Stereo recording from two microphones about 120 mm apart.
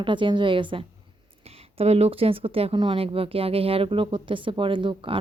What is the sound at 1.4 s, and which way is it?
Speech, 55° right (ahead or behind).